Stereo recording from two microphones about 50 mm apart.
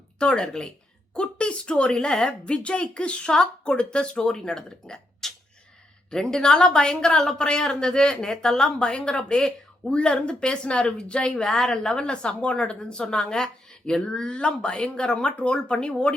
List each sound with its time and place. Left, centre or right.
0.2 s a woman's voice: centre
9.9 s a woman's voice: centre